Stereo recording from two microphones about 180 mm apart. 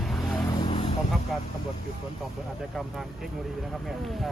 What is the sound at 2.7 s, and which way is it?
Speech, centre (ahead or behind).